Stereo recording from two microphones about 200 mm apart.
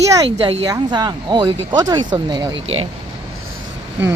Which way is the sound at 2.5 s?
80° right.